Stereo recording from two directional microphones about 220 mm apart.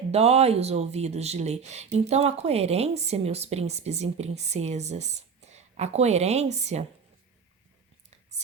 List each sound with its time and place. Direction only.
0.1 s speech: 30° right (ahead or behind)